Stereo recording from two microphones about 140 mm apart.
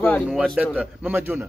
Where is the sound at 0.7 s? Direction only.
10° right (ahead or behind).